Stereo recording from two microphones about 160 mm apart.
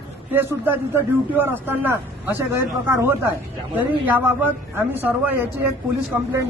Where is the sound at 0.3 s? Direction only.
10° right (ahead or behind).